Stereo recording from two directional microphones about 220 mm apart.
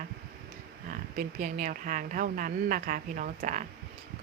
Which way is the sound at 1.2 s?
35° right (ahead or behind).